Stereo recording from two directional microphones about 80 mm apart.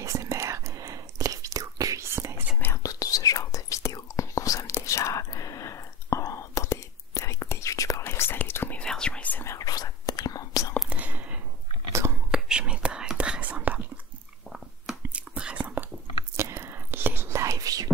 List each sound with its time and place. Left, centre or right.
0.0 s whispering: right
2.8 s whispering: left
8.0 s whispering: left
8.7 s whispering: centre
9.4 s whispering: left
9.7 s whispering: left
10.9 s whispering: right
11.9 s whispering: right
12.3 s whispering: centre
15.1 s whispering: centre
16.3 s whispering: right